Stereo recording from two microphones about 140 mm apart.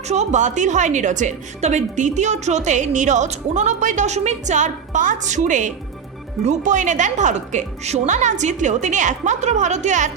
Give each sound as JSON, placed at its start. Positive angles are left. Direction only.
{"t": 0.1, "sound": "a woman's voice", "side_deg": -55}